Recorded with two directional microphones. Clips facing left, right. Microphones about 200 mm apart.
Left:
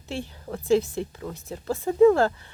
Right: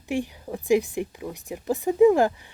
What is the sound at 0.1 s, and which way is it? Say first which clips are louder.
Speech: right 5 dB; 15° right (ahead or behind).